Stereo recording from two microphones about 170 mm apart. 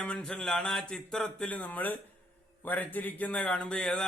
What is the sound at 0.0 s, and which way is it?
Speech, 5° left (ahead or behind).